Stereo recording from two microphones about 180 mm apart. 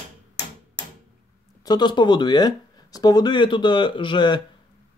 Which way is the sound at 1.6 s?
25° left (ahead or behind).